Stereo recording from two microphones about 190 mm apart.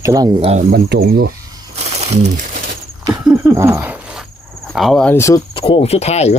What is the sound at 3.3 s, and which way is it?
Speech, 15° right (ahead or behind).